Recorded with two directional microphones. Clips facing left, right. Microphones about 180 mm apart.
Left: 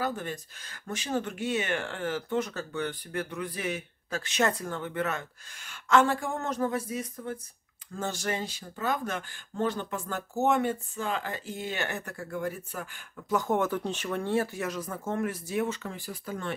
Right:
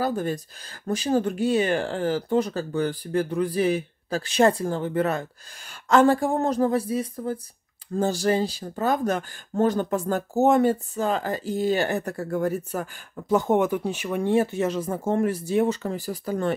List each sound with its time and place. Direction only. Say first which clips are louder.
0.0 s speech: right 7 dB; 40° right (ahead or behind)
13.6 s speech: right 6 dB; 15° right (ahead or behind); by 16.5 s 40° right (ahead or behind)